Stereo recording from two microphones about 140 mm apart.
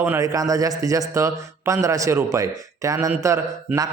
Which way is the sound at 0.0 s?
20° right (ahead or behind).